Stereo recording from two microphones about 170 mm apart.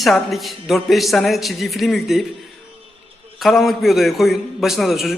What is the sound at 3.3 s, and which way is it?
A man's voice, centre (ahead or behind).